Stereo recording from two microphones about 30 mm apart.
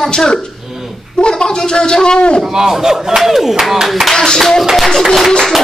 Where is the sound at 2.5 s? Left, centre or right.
Centre.